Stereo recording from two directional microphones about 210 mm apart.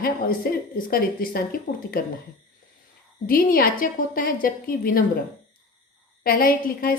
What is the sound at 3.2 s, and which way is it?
A woman's voice, 45° left (ahead or behind).